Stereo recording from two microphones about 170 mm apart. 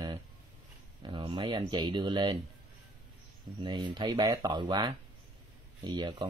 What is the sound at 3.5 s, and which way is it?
Speech, 25° right (ahead or behind).